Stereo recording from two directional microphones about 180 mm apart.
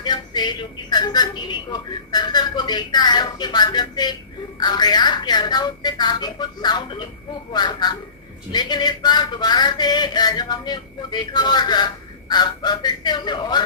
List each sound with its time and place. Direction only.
0.0 s speech: 25° left (ahead or behind)